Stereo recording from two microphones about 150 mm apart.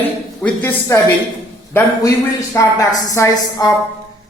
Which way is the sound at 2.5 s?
20° left (ahead or behind).